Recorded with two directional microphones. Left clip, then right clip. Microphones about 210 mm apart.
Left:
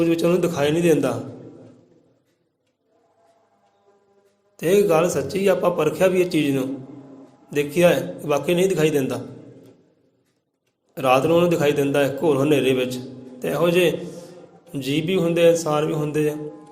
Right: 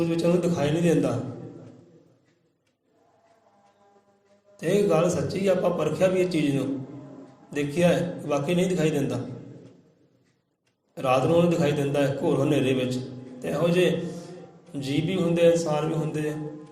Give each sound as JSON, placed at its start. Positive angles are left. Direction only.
{"t": 0.0, "sound": "a man's voice", "side_deg": 50}
{"t": 4.5, "sound": "a man's voice", "side_deg": 50}
{"t": 10.9, "sound": "a man's voice", "side_deg": 50}